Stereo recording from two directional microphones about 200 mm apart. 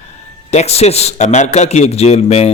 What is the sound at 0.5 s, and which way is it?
Speech, 30° left (ahead or behind).